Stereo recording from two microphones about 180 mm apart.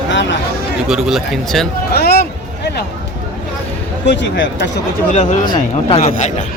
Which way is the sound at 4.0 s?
75° left (ahead or behind).